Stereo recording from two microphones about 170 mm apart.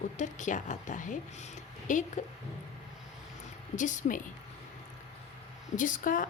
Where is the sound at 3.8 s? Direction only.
50° left (ahead or behind).